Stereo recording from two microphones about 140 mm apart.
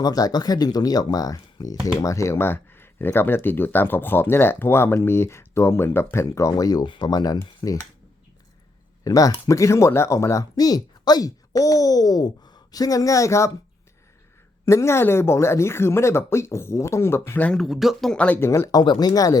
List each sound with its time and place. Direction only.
0.0 s speech: 25° left (ahead or behind)
9.0 s speech: 25° left (ahead or behind)
14.6 s speech: 20° left (ahead or behind)